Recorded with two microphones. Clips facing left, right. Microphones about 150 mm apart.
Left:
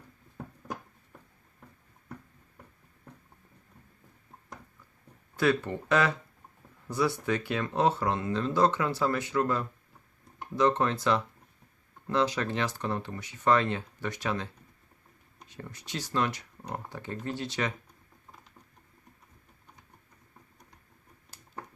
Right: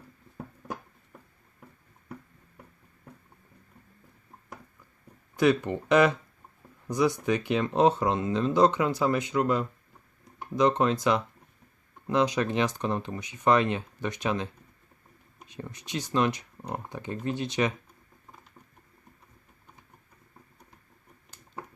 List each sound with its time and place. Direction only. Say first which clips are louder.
5.4 s speech: right 3 dB; 15° right (ahead or behind)